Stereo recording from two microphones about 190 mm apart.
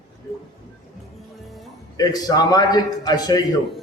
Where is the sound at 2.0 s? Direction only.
20° left (ahead or behind).